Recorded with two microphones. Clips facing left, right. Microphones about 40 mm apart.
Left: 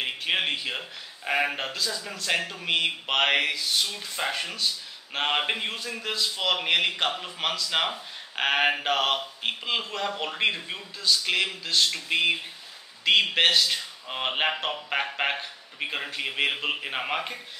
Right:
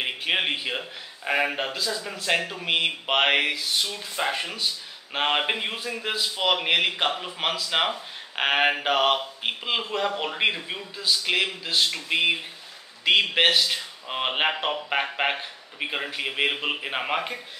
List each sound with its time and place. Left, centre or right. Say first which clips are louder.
0.0 s a man's voice: right 2 dB; centre